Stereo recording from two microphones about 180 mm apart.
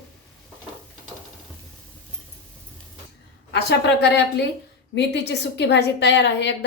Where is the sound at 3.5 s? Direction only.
75° left (ahead or behind).